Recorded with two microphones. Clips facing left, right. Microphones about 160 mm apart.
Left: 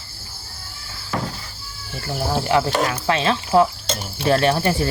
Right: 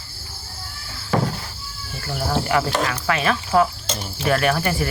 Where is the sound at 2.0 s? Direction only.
20° left (ahead or behind).